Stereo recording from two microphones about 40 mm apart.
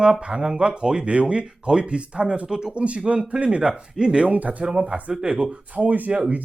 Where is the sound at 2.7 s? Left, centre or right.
Right.